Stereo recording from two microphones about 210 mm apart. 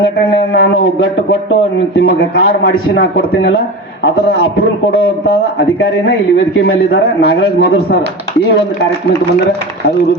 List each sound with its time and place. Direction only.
0.6 s a man's voice: 70° left (ahead or behind)
2.4 s a man's voice: 45° left (ahead or behind)
5.0 s a man's voice: 50° left (ahead or behind)
7.3 s a man's voice: 55° left (ahead or behind)